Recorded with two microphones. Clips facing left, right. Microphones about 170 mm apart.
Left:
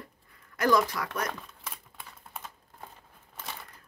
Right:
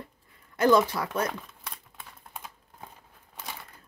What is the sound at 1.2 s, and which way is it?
Speech, 5° right (ahead or behind).